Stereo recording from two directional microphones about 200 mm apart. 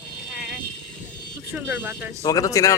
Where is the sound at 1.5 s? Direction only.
10° right (ahead or behind).